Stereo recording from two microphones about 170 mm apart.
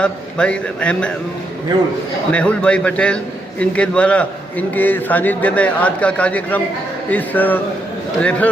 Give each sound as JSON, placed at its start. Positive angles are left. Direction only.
{"t": 0.0, "sound": "a man's voice", "side_deg": 5}
{"t": 2.3, "sound": "a man's voice", "side_deg": 5}